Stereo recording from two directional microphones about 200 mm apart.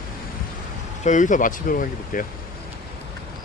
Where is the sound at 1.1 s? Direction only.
40° left (ahead or behind).